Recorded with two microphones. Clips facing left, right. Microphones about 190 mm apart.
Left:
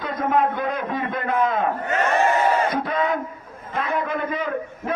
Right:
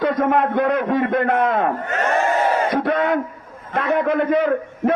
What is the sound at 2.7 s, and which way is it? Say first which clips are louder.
A man's voice: right 4 dB; 65° right (ahead or behind).